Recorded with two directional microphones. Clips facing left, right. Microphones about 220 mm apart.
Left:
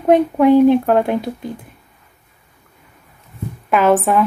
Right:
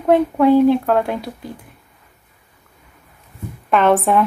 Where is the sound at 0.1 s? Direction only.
15° left (ahead or behind).